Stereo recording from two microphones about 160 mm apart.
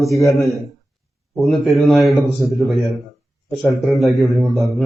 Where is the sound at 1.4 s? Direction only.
Centre (ahead or behind).